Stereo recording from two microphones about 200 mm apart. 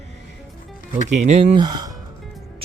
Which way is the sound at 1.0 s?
35° right (ahead or behind).